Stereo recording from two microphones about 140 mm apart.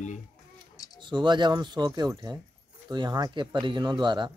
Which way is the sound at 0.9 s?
35° right (ahead or behind).